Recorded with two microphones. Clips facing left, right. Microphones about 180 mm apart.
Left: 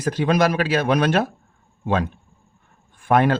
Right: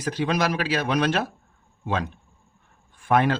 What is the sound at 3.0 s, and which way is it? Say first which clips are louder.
Speech: left 3 dB; 50° left (ahead or behind).